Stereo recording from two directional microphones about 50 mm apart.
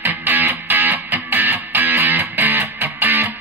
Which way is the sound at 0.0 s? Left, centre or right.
Right.